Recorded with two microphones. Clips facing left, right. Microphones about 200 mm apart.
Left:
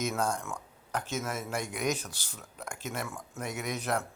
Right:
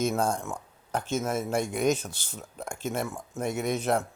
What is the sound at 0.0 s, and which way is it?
Speech, 30° right (ahead or behind).